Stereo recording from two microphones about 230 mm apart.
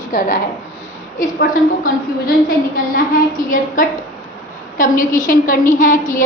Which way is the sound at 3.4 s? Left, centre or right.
Left.